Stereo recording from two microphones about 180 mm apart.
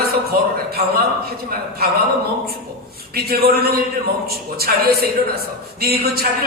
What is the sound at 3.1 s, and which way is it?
Speech, 60° right (ahead or behind).